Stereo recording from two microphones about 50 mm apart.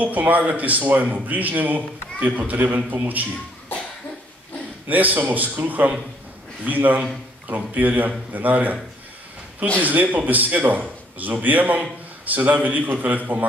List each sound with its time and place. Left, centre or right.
0.0 s speech: right
4.8 s speech: right
9.8 s speech: right